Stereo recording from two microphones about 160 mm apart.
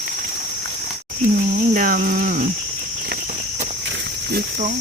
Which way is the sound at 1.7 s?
60° right (ahead or behind).